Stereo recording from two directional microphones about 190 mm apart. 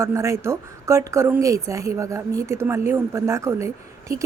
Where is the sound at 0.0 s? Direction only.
15° right (ahead or behind).